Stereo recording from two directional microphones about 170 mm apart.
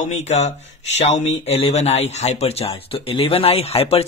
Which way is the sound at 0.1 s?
40° left (ahead or behind).